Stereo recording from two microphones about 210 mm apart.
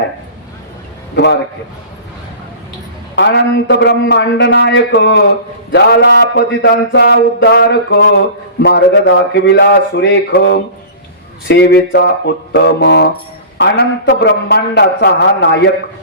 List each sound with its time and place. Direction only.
1.1 s a man's voice: 55° left (ahead or behind)
3.2 s a man's voice: 55° left (ahead or behind)
5.7 s mantra: 55° left (ahead or behind)
8.6 s a man's voice: 55° left (ahead or behind)
11.4 s mantra: 55° left (ahead or behind)
13.6 s a man's voice: 55° left (ahead or behind)